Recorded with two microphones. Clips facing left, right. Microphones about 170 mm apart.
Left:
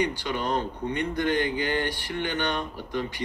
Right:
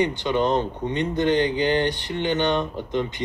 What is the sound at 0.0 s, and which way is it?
Speech, 20° right (ahead or behind).